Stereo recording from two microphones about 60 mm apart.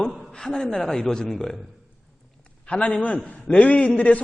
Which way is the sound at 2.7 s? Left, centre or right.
Centre.